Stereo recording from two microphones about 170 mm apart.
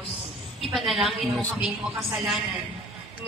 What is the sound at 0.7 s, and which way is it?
Speech, centre (ahead or behind).